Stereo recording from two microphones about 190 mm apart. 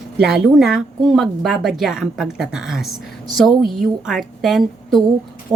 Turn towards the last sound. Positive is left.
turn(degrees=0)  # may be behind; listen again after turning